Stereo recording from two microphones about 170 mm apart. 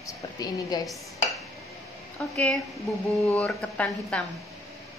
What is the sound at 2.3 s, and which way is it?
A woman's voice, 5° left (ahead or behind).